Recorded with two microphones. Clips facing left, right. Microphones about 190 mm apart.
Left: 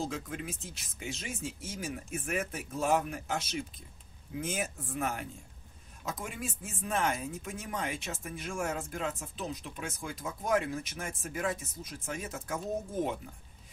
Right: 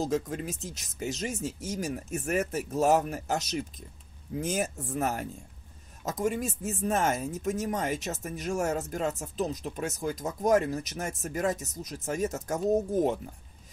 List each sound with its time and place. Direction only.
0.0 s speech: 40° right (ahead or behind)